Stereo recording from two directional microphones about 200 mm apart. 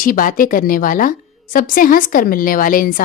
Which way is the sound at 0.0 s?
45° left (ahead or behind).